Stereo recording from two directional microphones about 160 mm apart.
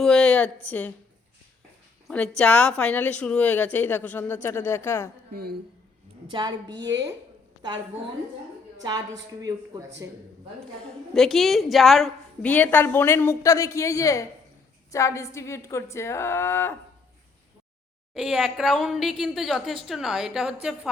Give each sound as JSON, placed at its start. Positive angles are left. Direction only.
{"t": 0.0, "sound": "a woman's voice", "side_deg": 5}
{"t": 2.0, "sound": "a woman's voice", "side_deg": 5}
{"t": 5.3, "sound": "a woman's voice", "side_deg": -70}
{"t": 6.3, "sound": "speech", "side_deg": -25}
{"t": 9.4, "sound": "speech", "side_deg": -20}
{"t": 11.1, "sound": "a woman's voice", "side_deg": 0}
{"t": 12.5, "sound": "a woman's voice", "side_deg": 10}
{"t": 18.1, "sound": "a woman's voice", "side_deg": -5}